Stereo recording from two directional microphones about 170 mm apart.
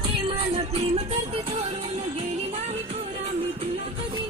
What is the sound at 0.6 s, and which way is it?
Music, 35° right (ahead or behind).